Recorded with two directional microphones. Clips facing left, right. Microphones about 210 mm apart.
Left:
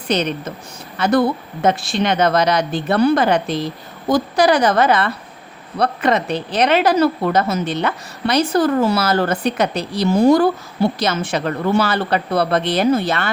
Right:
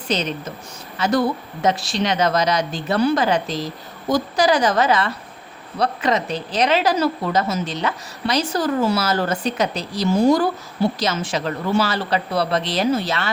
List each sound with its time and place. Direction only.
0.1 s a woman's voice: 60° left (ahead or behind)